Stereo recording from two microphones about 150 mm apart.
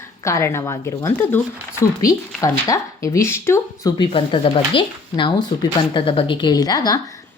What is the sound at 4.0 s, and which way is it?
A woman's voice, 35° left (ahead or behind).